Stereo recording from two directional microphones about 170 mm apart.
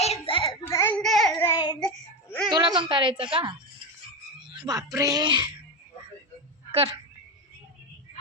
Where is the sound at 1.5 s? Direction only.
25° left (ahead or behind).